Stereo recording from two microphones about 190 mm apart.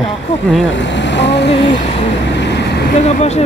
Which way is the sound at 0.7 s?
70° left (ahead or behind).